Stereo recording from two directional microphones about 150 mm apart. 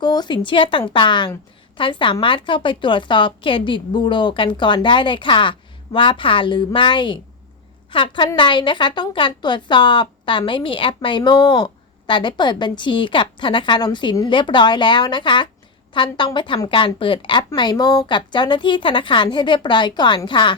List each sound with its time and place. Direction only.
0.0 s a woman's voice: 30° left (ahead or behind)